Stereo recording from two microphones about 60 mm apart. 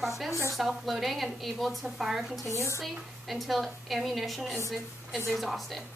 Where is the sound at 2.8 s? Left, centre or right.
Centre.